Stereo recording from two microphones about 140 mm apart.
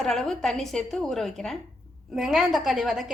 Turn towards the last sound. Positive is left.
turn(degrees=0)  # may be behind; listen again after turning